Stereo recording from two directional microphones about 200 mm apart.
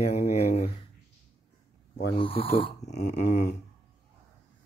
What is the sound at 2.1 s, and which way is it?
Child singing, 25° left (ahead or behind).